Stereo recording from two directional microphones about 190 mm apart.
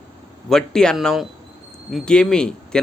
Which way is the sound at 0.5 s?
5° left (ahead or behind).